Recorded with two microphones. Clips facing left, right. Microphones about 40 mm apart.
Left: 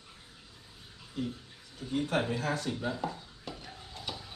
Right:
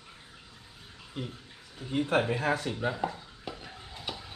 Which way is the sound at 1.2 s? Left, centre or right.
Right.